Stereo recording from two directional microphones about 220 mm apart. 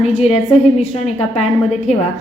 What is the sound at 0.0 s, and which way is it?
A woman's voice, 30° left (ahead or behind).